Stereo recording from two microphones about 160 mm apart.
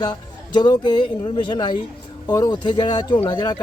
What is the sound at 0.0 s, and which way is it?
Speech, 25° left (ahead or behind).